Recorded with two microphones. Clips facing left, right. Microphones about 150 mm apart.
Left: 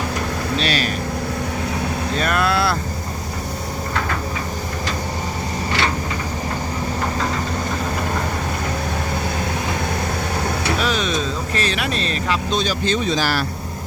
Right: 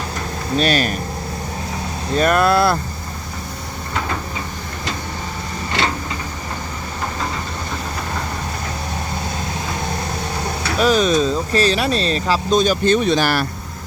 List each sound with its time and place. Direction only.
0.5 s speech: 45° right (ahead or behind)
2.1 s speech: 45° right (ahead or behind)
10.8 s speech: 40° right (ahead or behind); by 13.4 s 60° right (ahead or behind)